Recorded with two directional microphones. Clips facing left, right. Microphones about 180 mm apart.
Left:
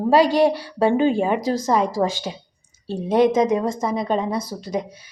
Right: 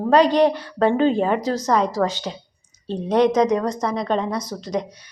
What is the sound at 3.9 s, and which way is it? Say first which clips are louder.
Speech: even; 5° left (ahead or behind).